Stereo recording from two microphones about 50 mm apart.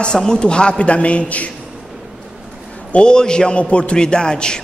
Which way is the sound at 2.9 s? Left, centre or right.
Centre.